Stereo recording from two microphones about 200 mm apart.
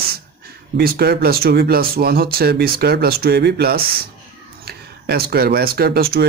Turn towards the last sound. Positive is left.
turn(degrees=-50)  # may be behind; listen again after turning